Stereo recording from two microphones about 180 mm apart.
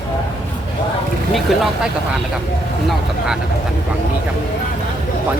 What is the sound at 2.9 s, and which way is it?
Speech, 5° right (ahead or behind).